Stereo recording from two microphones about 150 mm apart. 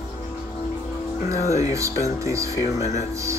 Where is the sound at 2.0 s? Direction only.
20° right (ahead or behind).